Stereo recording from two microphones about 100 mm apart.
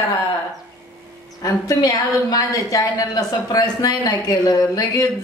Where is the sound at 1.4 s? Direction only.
40° left (ahead or behind).